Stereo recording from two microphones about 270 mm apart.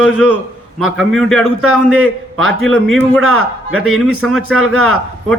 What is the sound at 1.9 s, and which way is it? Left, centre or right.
Speech, right.